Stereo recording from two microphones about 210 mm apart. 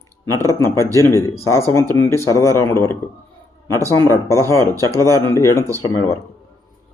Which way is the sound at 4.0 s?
15° left (ahead or behind).